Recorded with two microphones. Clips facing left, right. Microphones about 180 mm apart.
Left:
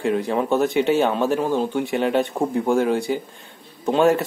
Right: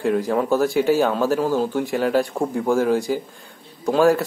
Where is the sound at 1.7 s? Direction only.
Centre (ahead or behind).